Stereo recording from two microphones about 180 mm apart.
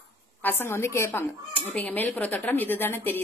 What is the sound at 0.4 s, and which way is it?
A woman's voice, 10° left (ahead or behind).